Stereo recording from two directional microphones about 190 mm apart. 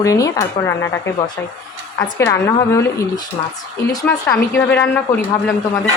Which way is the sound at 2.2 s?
15° left (ahead or behind).